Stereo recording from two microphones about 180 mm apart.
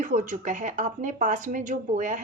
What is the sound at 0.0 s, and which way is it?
Speech, 45° right (ahead or behind).